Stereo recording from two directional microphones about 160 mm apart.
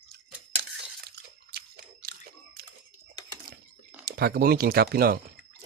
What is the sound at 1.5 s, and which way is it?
Biting, 75° right (ahead or behind).